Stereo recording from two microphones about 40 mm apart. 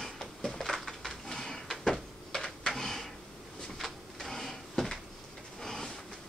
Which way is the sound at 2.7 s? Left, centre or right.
Centre.